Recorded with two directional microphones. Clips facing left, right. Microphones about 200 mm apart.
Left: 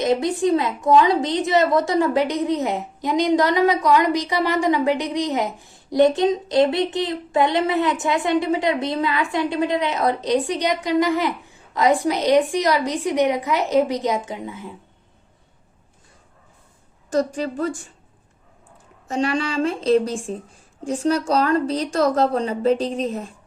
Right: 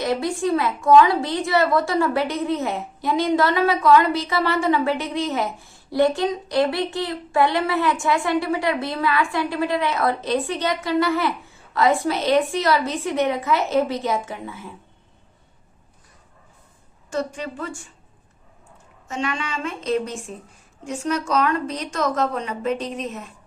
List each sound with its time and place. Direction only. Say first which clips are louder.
0.0 s a woman's voice: left 3 dB; 20° left (ahead or behind)
17.1 s a woman's voice: left 5 dB; 35° left (ahead or behind)
19.0 s a woman's voice: left 5 dB; 35° left (ahead or behind)